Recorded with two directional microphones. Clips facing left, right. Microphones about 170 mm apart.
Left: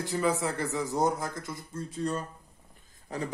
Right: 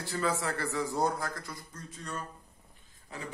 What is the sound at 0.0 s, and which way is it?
Speech, 20° left (ahead or behind).